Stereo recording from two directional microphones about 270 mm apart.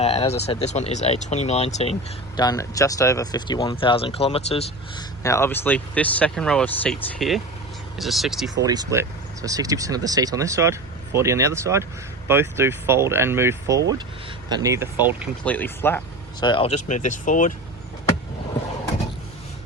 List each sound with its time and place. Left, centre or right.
0.0 s speech: left
5.2 s speech: centre
8.6 s speech: centre
15.4 s speech: centre; by 17.5 s left